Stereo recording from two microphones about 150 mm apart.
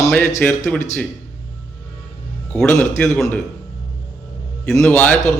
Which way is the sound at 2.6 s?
10° left (ahead or behind).